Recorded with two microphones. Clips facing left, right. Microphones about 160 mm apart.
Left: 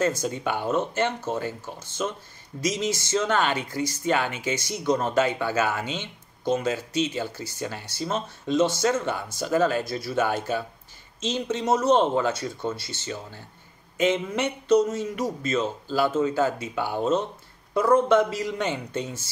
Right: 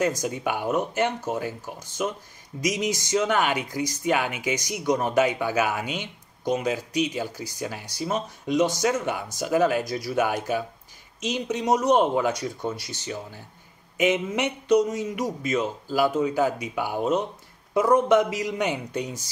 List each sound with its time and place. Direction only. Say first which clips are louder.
0.0 s speech: even; 15° right (ahead or behind)